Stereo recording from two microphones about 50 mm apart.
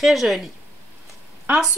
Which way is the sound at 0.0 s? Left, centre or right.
Centre.